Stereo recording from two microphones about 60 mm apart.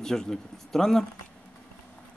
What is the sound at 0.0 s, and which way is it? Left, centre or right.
A man's voice, centre.